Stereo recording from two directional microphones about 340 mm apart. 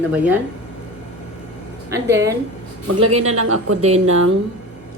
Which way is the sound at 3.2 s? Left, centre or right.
Right.